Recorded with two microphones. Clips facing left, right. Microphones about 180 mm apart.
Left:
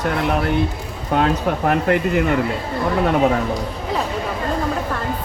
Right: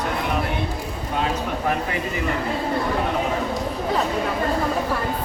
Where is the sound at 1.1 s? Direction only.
60° left (ahead or behind).